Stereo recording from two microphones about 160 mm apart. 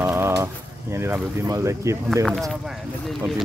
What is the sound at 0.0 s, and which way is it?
Bird, 15° right (ahead or behind).